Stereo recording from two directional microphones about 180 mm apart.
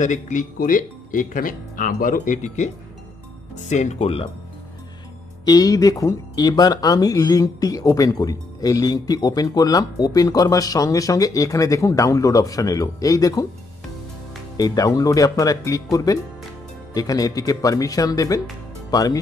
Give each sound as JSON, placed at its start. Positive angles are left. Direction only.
{"t": 0.0, "sound": "speech", "side_deg": 45}
{"t": 5.4, "sound": "speech", "side_deg": 20}
{"t": 14.6, "sound": "speech", "side_deg": 20}